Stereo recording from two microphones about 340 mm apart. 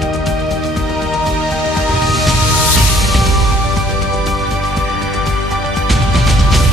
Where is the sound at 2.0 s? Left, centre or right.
Centre.